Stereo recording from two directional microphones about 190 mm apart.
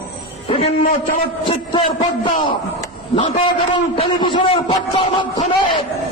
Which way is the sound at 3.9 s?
25° left (ahead or behind).